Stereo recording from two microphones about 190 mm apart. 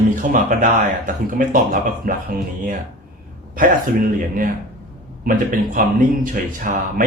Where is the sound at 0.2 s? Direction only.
45° right (ahead or behind).